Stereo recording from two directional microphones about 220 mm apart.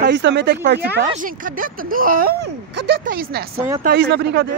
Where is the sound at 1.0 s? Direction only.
40° right (ahead or behind).